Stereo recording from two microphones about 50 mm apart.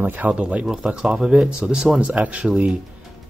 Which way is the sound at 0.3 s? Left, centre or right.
Right.